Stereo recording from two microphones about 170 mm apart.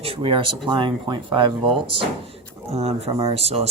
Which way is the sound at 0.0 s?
35° right (ahead or behind).